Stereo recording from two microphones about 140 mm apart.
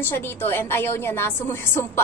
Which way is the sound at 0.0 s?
15° left (ahead or behind).